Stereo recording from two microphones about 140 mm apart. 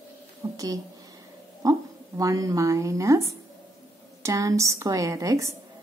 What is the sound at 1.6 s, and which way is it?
A woman's voice, 25° right (ahead or behind).